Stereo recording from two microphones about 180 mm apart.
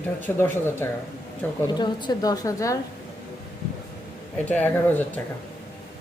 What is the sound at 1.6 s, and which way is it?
A woman's voice, 25° left (ahead or behind).